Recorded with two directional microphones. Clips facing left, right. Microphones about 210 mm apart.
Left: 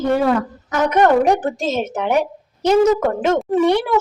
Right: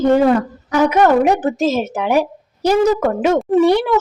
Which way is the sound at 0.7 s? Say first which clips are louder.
Right 2 dB; 10° right (ahead or behind).